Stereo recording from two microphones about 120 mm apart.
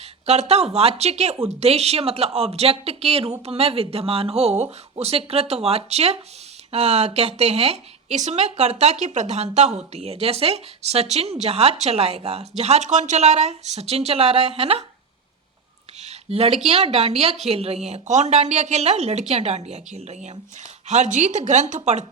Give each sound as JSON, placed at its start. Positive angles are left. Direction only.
{"t": 0.3, "sound": "speech", "side_deg": -65}
{"t": 16.0, "sound": "a sound", "side_deg": -60}
{"t": 16.6, "sound": "speech", "side_deg": -60}